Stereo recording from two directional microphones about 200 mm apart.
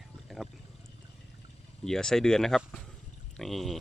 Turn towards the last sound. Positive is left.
turn(degrees=0)  # may be behind; listen again after turning